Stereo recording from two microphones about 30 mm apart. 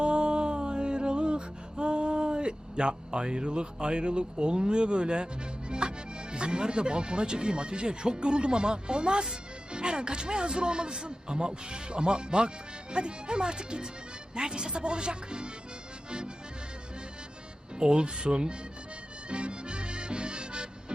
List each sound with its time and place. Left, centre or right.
0.0 s music: right
9.3 s speech: right
16.0 s accordion: right
17.7 s speech: right
19.3 s accordion: right